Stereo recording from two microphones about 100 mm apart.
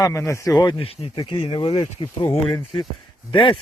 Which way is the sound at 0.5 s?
45° left (ahead or behind).